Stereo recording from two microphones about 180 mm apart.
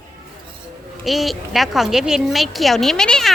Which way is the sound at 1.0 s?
Centre (ahead or behind).